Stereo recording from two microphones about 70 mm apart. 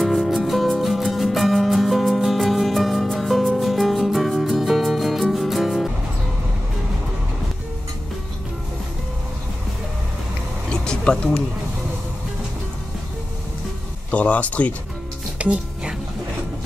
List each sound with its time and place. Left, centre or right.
0.0 s music: centre
10.7 s a sound: centre
14.1 s speech: left
15.3 s music: centre